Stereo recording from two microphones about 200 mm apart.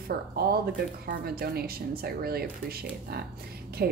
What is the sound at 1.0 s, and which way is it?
Speech, 50° right (ahead or behind).